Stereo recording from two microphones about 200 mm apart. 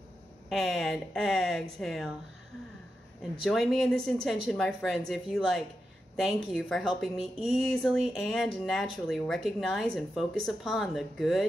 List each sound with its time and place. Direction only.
0.5 s speech: centre (ahead or behind)
3.4 s speech: centre (ahead or behind)